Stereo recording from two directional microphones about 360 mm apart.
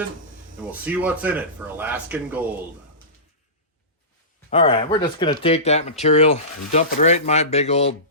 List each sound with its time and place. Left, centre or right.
0.7 s speech: centre
4.4 s speech: centre